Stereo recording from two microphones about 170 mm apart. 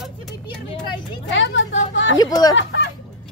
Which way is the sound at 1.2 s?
90° left.